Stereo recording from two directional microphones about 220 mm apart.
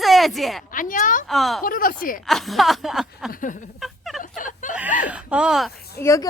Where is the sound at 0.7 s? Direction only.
35° left (ahead or behind).